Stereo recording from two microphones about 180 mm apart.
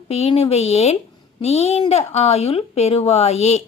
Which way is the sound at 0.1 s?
35° left (ahead or behind).